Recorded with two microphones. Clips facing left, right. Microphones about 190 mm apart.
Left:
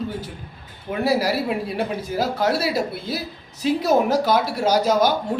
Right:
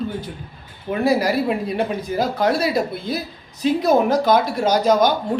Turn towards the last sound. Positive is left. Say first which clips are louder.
# right 2 dB
turn(degrees=5)  # may be behind; listen again after turning